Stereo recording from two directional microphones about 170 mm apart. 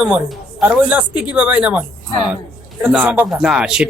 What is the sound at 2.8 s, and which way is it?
A woman's voice, 10° right (ahead or behind).